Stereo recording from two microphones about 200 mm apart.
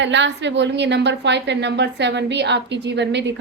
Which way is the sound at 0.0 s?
60° right (ahead or behind).